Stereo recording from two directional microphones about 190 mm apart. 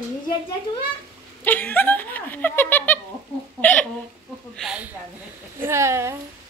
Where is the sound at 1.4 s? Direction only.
10° left (ahead or behind).